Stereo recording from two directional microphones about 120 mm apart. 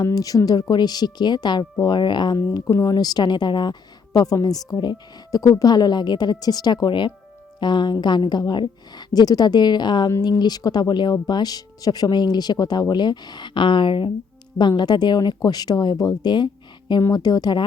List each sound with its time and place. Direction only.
0.0 s a woman's voice: 30° left (ahead or behind)